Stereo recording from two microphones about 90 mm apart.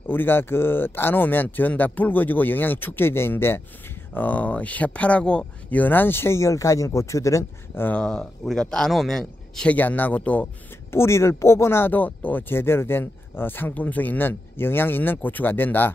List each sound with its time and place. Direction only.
0.1 s speech: 25° left (ahead or behind)
7.8 s a man's voice: 10° left (ahead or behind)
9.7 s a man's voice: 20° left (ahead or behind)
10.9 s speech: 30° left (ahead or behind)